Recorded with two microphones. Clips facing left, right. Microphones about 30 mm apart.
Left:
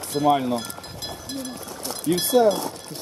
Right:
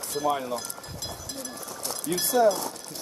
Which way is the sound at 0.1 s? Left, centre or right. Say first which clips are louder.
Left 7 dB; left.